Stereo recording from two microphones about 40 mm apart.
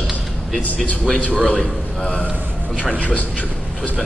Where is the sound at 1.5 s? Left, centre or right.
Left.